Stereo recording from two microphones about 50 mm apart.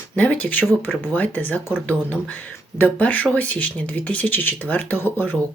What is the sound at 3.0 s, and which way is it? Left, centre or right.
Speech, left.